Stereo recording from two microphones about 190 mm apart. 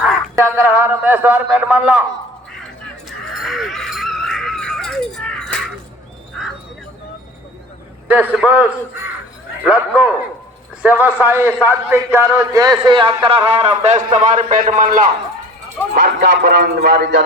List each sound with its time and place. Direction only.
0.3 s a man's voice: 10° right (ahead or behind)
3.1 s crow: centre (ahead or behind)
8.1 s a man's voice: 5° right (ahead or behind); by 15.1 s 45° right (ahead or behind)
16.0 s speech: 60° right (ahead or behind)